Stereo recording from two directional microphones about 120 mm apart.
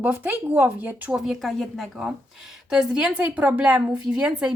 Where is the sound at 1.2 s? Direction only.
Centre (ahead or behind).